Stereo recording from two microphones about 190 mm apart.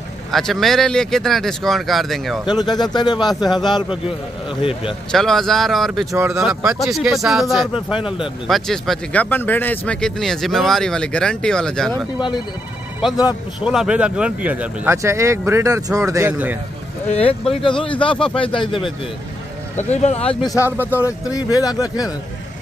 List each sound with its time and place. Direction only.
0.3 s speech: centre (ahead or behind)
2.4 s speech: 20° left (ahead or behind)
3.3 s speech: centre (ahead or behind)
4.6 s speech: 30° left (ahead or behind)
5.1 s speech: centre (ahead or behind)
6.1 s speech: 15° right (ahead or behind)
6.4 s speech: 5° right (ahead or behind)
13.7 s speech: 5° right (ahead or behind)
17.1 s speech: 30° left (ahead or behind)
19.9 s speech: 35° left (ahead or behind)
20.8 s speech: 15° left (ahead or behind)